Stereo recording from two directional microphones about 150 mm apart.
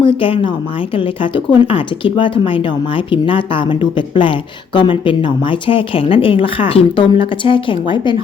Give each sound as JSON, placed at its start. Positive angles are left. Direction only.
{"t": 0.0, "sound": "speech", "side_deg": 35}